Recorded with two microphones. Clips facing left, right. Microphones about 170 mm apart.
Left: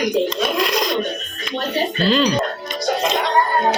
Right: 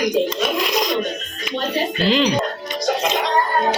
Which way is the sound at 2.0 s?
20° right (ahead or behind).